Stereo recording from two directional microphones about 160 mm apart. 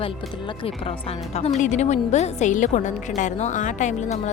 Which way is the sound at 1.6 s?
45° left (ahead or behind).